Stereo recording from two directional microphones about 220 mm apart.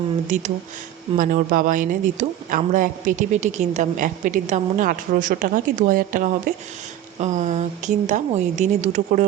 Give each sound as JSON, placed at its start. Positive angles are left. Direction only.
{"t": 1.1, "sound": "speech", "side_deg": -35}